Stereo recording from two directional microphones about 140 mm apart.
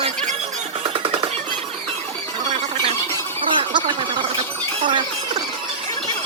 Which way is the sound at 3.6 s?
35° right (ahead or behind).